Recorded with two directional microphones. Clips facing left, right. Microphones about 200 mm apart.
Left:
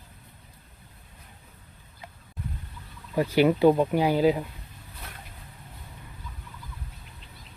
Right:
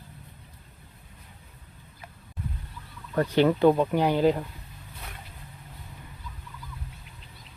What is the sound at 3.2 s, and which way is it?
Speech, 10° left (ahead or behind).